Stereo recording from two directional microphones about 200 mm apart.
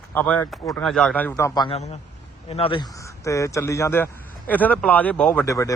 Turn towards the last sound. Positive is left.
turn(degrees=15)  # may be behind; listen again after turning